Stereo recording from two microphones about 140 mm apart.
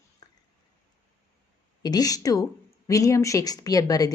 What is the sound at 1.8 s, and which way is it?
A woman's voice, 25° left (ahead or behind).